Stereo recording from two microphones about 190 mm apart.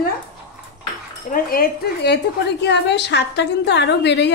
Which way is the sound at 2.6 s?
65° left (ahead or behind).